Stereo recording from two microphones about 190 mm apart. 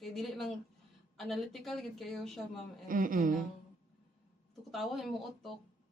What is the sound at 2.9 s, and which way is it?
Speech, 45° right (ahead or behind).